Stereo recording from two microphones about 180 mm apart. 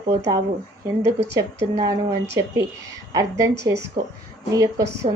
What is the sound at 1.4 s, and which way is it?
A woman's voice, 20° right (ahead or behind).